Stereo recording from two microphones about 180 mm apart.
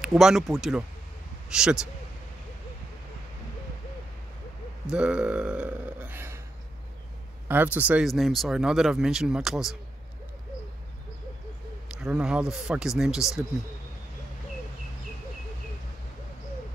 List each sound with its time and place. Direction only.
0.0 s speech: 5° right (ahead or behind)
4.9 s a sound: 5° right (ahead or behind)
7.4 s speech: 10° right (ahead or behind)
12.0 s speech: 5° right (ahead or behind)